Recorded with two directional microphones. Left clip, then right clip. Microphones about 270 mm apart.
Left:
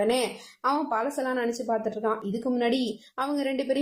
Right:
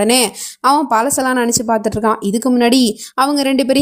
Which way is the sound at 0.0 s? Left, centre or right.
Right.